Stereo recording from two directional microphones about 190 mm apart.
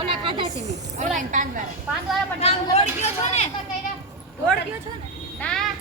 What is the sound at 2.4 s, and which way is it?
Speech, 35° left (ahead or behind).